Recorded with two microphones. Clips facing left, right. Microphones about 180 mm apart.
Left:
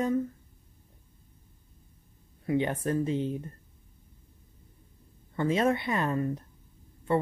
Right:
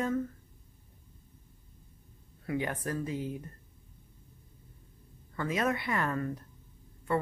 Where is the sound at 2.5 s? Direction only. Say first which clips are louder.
Left 6 dB; 25° left (ahead or behind).